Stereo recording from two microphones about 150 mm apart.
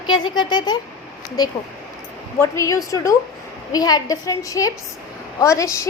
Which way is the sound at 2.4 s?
20° left (ahead or behind).